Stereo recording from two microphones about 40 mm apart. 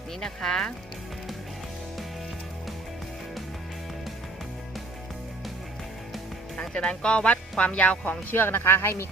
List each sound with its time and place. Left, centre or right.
0.2 s speech: centre
6.6 s speech: left
7.6 s speech: left
8.3 s speech: left